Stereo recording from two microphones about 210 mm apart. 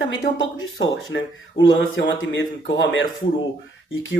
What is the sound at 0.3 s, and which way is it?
Speech, 70° left (ahead or behind).